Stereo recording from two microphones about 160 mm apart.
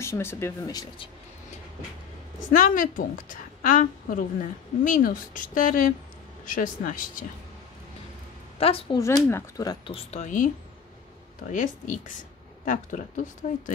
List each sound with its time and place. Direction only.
0.0 s speech: 15° left (ahead or behind)
2.5 s a woman's voice: 55° left (ahead or behind)
8.5 s a woman's voice: 35° left (ahead or behind)
8.9 s speech: 20° left (ahead or behind)
9.9 s speech: 50° left (ahead or behind)